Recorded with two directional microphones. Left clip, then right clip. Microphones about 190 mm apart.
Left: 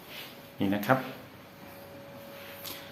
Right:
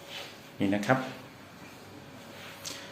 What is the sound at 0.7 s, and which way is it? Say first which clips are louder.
Speech: even; 5° left (ahead or behind).